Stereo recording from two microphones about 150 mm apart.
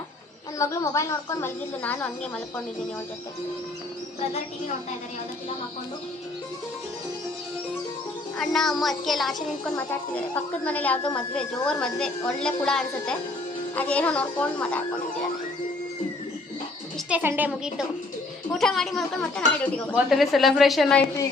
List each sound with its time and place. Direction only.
0.6 s speech: 20° left (ahead or behind)
8.4 s a woman's voice: 5° left (ahead or behind)
9.7 s a woman's voice: 10° left (ahead or behind)
17.1 s a woman's voice: 10° right (ahead or behind)
18.5 s a woman's voice: centre (ahead or behind)